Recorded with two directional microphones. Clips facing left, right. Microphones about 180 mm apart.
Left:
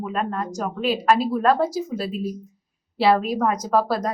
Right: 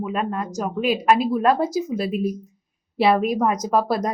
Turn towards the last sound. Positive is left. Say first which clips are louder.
# even
turn(degrees=-15)  # may be behind; listen again after turning